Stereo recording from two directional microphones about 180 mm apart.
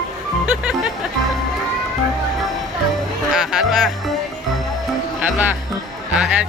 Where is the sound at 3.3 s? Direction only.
5° right (ahead or behind).